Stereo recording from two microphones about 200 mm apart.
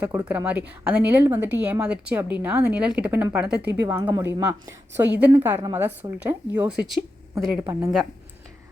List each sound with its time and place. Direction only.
0.0 s a woman's voice: 10° right (ahead or behind)